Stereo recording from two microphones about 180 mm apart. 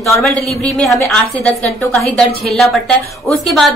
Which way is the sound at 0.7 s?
5° left (ahead or behind).